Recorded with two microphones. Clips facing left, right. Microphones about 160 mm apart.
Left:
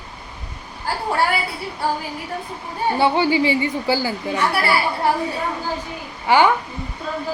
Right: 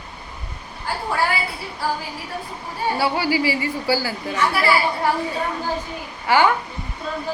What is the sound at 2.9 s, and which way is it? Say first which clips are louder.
A woman's voice: left 4 dB; 25° left (ahead or behind).